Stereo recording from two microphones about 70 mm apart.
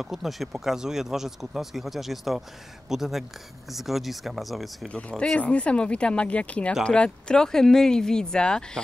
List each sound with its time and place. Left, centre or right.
0.0 s speech: centre
4.8 s speech: centre